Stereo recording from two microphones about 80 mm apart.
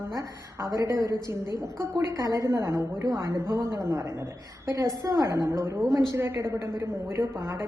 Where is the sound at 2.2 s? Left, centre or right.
Right.